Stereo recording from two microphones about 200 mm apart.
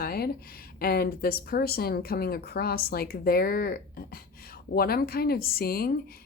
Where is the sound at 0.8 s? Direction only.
50° left (ahead or behind).